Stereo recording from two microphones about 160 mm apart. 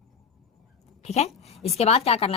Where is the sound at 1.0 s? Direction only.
45° left (ahead or behind).